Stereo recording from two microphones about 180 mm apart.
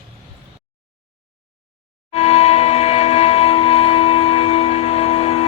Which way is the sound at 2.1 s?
35° left (ahead or behind).